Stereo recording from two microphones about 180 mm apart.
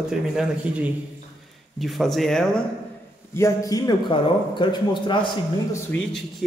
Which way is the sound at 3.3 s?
20° left (ahead or behind).